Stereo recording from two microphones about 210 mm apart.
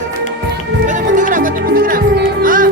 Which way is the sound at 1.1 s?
40° right (ahead or behind).